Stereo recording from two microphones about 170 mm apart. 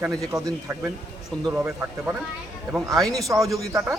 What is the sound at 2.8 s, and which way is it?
Speech, 20° right (ahead or behind).